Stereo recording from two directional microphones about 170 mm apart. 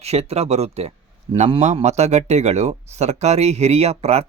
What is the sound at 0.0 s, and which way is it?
A man's voice, 40° right (ahead or behind).